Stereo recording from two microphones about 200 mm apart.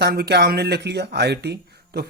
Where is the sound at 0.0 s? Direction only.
55° right (ahead or behind).